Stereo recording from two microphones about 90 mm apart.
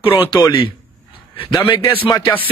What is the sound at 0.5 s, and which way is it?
A man's voice, 70° left (ahead or behind).